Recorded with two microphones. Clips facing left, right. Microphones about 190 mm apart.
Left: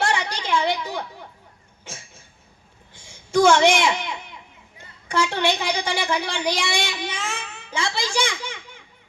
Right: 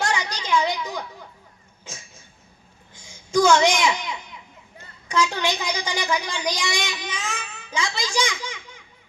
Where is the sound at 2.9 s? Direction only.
55° left (ahead or behind).